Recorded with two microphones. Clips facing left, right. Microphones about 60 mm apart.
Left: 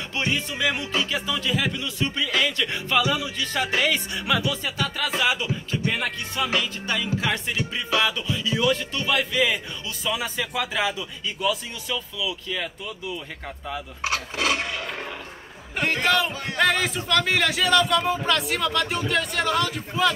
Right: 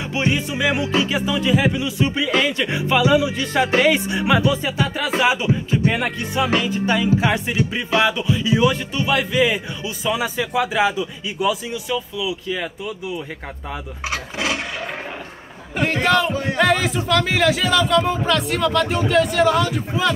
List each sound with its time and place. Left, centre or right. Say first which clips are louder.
0.1 s speech: right 5 dB; centre
15.8 s speech: right 4 dB; centre